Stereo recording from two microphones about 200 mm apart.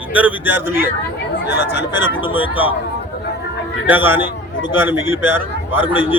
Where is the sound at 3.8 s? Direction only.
10° right (ahead or behind).